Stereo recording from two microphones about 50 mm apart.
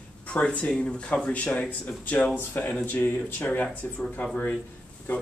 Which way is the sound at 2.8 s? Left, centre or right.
Left.